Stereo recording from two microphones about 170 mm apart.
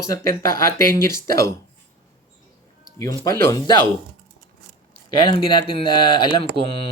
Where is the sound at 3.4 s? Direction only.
25° left (ahead or behind).